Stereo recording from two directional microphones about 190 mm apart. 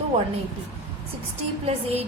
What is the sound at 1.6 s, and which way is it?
Music, 35° right (ahead or behind).